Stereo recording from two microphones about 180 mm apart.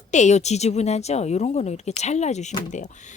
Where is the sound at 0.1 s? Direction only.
40° left (ahead or behind).